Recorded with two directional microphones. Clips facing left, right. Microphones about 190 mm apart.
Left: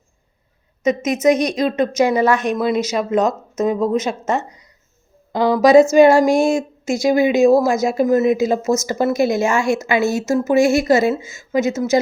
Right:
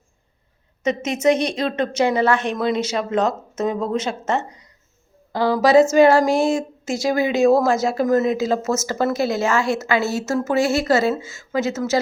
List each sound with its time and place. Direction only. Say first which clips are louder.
1.0 s a woman's voice: left 2 dB; 30° right (ahead or behind)
2.0 s speech: left 3 dB; 10° left (ahead or behind)